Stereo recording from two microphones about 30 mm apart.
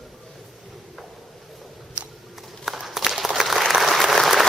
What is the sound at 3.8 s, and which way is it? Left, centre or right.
Applause, centre.